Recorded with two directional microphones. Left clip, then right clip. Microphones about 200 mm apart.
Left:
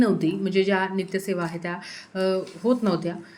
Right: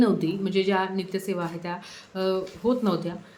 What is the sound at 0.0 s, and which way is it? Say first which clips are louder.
A woman's voice: left 1 dB; 10° left (ahead or behind).